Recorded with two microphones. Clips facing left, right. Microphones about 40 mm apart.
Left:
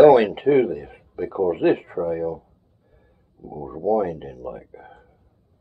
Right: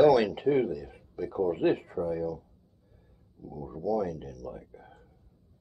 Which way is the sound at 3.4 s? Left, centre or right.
Left.